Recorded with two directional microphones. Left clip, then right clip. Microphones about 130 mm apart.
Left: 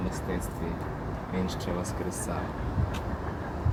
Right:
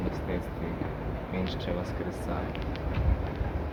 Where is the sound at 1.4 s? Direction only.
35° left (ahead or behind).